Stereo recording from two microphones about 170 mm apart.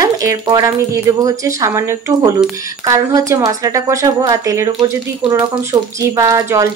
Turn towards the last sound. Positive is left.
turn(degrees=-20)  # may be behind; listen again after turning